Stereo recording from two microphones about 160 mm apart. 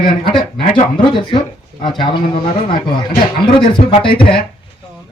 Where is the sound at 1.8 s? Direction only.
30° left (ahead or behind).